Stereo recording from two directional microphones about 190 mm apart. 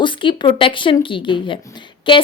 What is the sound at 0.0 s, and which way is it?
A woman's voice, 25° left (ahead or behind).